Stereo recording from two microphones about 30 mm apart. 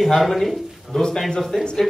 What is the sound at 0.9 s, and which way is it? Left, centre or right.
Speech, centre.